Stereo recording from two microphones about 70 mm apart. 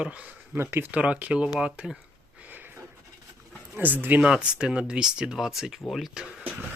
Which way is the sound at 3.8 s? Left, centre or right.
Right.